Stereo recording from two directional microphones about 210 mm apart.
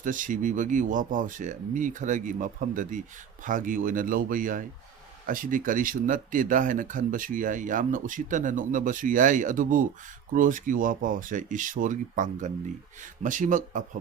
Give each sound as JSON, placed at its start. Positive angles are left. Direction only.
{"t": 0.0, "sound": "speech", "side_deg": -40}